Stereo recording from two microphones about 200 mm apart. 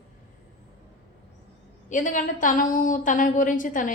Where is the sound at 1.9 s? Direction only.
40° left (ahead or behind).